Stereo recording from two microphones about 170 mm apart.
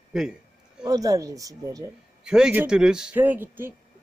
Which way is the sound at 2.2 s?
5° right (ahead or behind).